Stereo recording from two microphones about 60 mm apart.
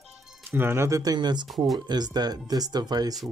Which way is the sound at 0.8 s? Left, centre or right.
Right.